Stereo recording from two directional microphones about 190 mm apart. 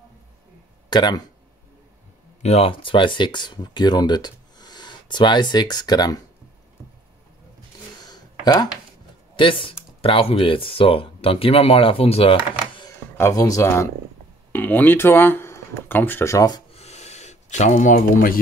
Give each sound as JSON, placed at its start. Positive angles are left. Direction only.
{"t": 0.8, "sound": "speech", "side_deg": 20}
{"t": 2.4, "sound": "speech", "side_deg": 30}
{"t": 8.0, "sound": "a sound", "side_deg": 20}
{"t": 9.4, "sound": "speech", "side_deg": 25}
{"t": 13.2, "sound": "speech", "side_deg": 20}
{"t": 16.7, "sound": "a sound", "side_deg": 35}